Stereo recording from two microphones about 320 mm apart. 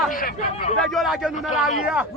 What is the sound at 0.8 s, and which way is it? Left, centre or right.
A man's voice, centre.